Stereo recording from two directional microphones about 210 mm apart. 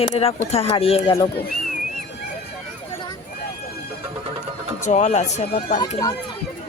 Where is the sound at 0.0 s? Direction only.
30° left (ahead or behind).